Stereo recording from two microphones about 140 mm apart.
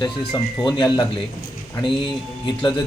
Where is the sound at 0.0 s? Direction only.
35° left (ahead or behind).